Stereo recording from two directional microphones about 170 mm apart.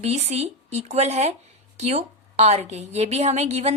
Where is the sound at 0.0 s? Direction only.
40° right (ahead or behind).